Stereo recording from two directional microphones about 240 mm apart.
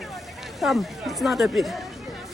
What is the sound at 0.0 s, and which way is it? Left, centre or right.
Speech, centre.